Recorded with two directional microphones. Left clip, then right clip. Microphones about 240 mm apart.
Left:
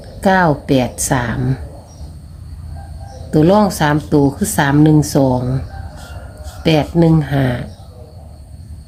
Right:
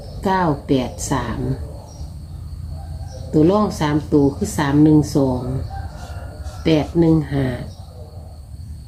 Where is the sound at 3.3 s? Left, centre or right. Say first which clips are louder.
Left 4 dB; left.